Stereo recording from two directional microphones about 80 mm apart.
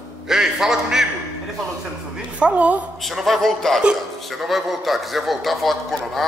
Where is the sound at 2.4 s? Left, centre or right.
Centre.